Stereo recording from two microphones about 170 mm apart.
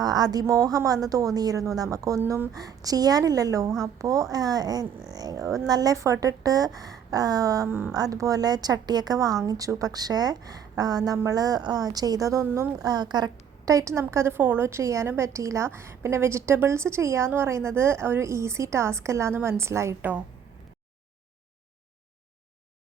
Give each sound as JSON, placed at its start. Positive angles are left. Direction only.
{"t": 0.0, "sound": "a woman's voice", "side_deg": -25}